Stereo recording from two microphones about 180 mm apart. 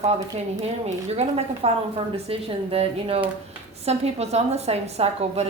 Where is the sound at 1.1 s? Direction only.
35° right (ahead or behind).